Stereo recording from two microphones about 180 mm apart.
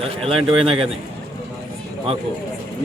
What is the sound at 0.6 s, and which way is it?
Speech, 30° right (ahead or behind).